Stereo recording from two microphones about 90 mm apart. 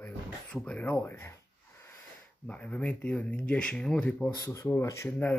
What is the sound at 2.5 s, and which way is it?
Speech, 15° left (ahead or behind).